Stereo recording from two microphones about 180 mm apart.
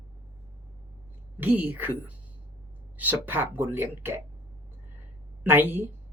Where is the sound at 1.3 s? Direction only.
10° right (ahead or behind).